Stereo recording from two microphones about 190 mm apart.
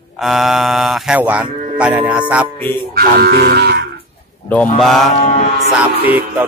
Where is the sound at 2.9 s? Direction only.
55° right (ahead or behind).